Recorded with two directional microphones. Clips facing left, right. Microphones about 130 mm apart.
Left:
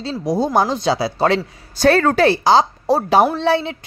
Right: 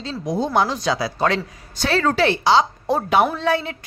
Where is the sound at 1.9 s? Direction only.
50° left (ahead or behind).